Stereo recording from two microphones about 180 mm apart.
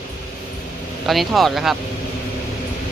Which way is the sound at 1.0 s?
Centre (ahead or behind).